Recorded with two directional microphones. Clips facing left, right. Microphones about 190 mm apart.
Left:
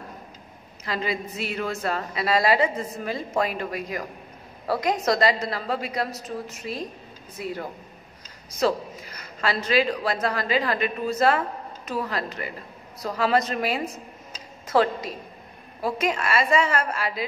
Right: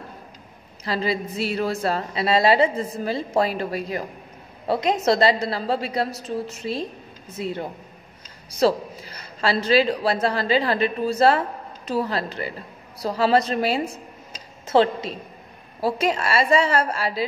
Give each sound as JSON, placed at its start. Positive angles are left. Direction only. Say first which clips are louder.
{"t": 0.8, "sound": "a woman's voice", "louder": "right 4 dB", "side_deg": -30}